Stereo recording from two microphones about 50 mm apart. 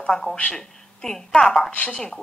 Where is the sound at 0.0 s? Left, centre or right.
Centre.